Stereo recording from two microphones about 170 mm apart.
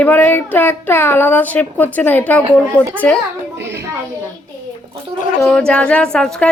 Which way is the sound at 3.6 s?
90° right.